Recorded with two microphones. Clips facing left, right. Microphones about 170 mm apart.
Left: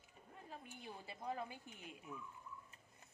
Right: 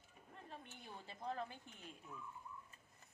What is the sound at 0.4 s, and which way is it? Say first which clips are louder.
A woman's voice: left 3 dB; 5° left (ahead or behind).